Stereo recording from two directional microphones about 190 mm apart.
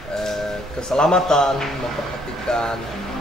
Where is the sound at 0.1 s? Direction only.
Centre (ahead or behind).